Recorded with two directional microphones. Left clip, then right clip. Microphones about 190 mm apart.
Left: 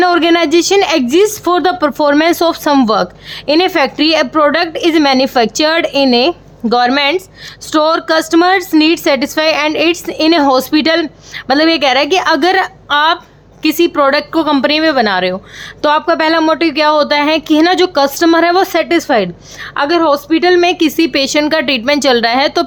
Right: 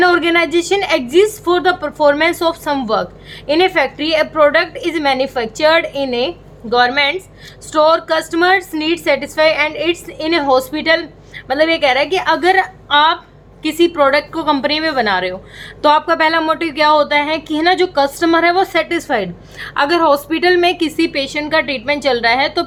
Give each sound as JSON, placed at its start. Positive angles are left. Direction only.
{"t": 0.0, "sound": "speech", "side_deg": 35}